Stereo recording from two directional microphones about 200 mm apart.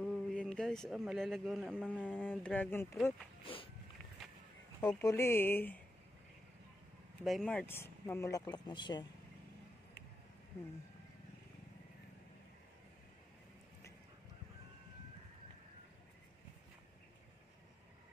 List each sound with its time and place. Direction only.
0.0 s speech: centre (ahead or behind)
3.4 s a sound: 25° left (ahead or behind)
4.7 s speech: 15° left (ahead or behind)
7.2 s speech: centre (ahead or behind); by 9.0 s 20° left (ahead or behind)